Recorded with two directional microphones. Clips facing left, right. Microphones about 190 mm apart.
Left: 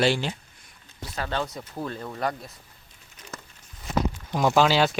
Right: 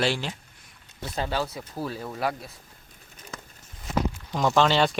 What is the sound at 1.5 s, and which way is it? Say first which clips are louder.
Speech: even; 5° right (ahead or behind).